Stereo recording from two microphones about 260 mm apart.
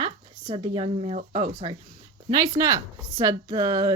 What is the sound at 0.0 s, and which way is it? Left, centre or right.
Speech, right.